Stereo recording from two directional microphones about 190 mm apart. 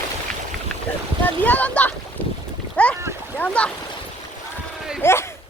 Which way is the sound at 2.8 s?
5° left (ahead or behind).